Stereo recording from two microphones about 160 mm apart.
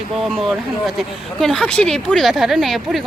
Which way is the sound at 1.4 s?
5° left (ahead or behind).